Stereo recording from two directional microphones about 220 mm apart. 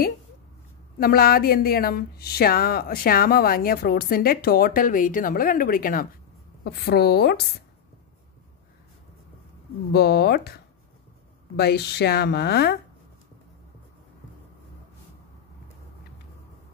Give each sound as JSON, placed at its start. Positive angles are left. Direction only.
{"t": 0.9, "sound": "a woman's voice", "side_deg": 40}
{"t": 9.9, "sound": "speech", "side_deg": 50}
{"t": 11.5, "sound": "speech", "side_deg": 45}